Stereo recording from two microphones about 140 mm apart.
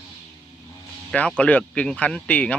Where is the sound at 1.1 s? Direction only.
10° left (ahead or behind).